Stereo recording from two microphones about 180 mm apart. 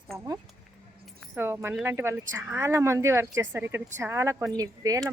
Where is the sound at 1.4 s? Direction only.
15° right (ahead or behind).